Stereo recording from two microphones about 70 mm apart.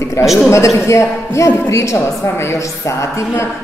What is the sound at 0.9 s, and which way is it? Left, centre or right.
A woman's voice, left.